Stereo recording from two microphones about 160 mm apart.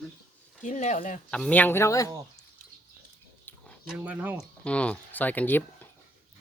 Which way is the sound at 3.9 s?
10° right (ahead or behind).